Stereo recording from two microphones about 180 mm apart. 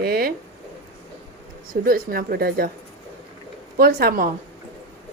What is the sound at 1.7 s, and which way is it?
Speech, 55° right (ahead or behind).